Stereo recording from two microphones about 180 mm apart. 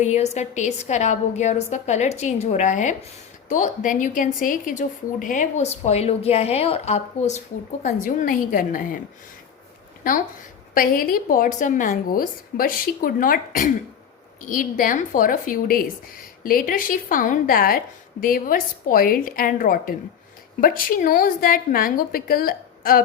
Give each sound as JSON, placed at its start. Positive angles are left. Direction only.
{"t": 0.0, "sound": "a woman's voice", "side_deg": 40}
{"t": 10.0, "sound": "speech", "side_deg": 50}